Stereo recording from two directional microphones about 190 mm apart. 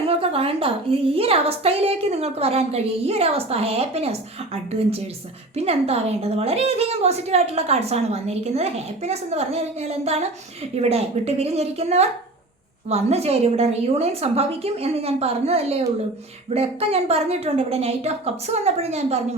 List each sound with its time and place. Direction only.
0.1 s a woman's voice: 30° right (ahead or behind)